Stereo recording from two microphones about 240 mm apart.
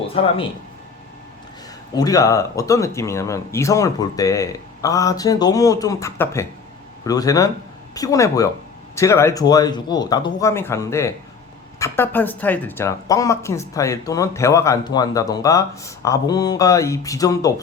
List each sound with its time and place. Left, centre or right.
0.2 s speech: left
1.9 s speech: centre